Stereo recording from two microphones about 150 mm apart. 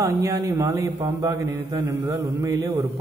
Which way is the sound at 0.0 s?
20° right (ahead or behind).